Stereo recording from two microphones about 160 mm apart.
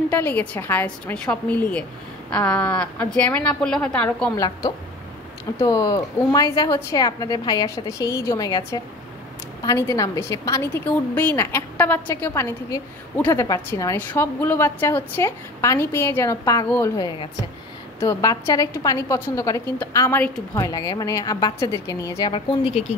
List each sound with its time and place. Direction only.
0.1 s a woman's voice: 10° left (ahead or behind)
4.4 s a woman's voice: 25° left (ahead or behind)
20.5 s a woman's voice: 25° left (ahead or behind)